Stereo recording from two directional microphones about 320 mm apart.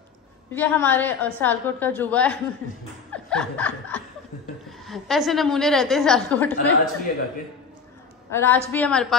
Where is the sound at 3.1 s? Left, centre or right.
Centre.